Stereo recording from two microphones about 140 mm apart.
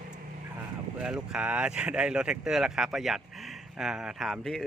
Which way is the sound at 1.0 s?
5° right (ahead or behind).